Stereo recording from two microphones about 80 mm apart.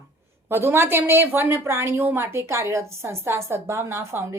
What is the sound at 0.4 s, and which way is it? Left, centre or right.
A woman's voice, right.